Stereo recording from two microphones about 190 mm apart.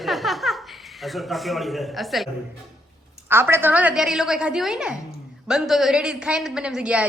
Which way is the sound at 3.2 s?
10° right (ahead or behind).